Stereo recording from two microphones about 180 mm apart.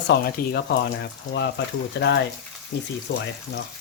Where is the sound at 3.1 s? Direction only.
90° left.